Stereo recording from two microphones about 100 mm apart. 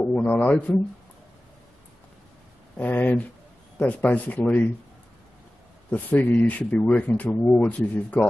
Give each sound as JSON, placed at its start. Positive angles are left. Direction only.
{"t": 0.0, "sound": "a man's voice", "side_deg": 15}
{"t": 2.8, "sound": "speech", "side_deg": 15}
{"t": 5.9, "sound": "speech", "side_deg": 15}